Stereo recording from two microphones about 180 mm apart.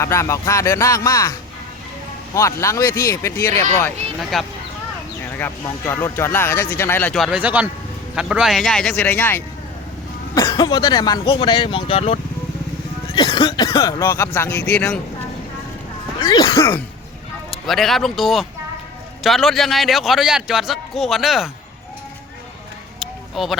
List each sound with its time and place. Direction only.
0.0 s speech: 15° left (ahead or behind)
2.3 s speech: 15° left (ahead or behind)
4.2 s a man's voice: centre (ahead or behind)
5.4 s speech: 15° left (ahead or behind)
7.2 s a man's voice: 5° right (ahead or behind)
16.2 s speech: 20° left (ahead or behind)
17.7 s a man's voice: centre (ahead or behind)
23.0 s a sound: centre (ahead or behind)